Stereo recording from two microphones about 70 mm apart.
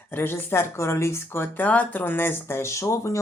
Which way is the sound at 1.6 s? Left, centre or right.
Left.